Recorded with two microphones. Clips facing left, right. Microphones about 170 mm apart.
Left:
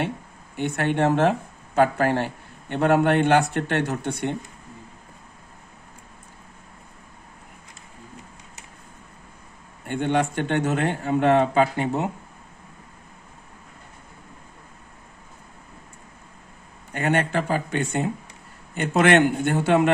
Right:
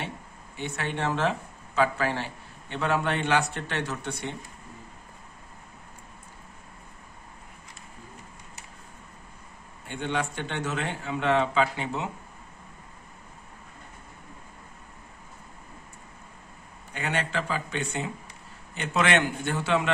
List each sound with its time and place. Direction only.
0.6 s a man's voice: 55° left (ahead or behind)
9.8 s a man's voice: 55° left (ahead or behind)
16.9 s a man's voice: 50° left (ahead or behind)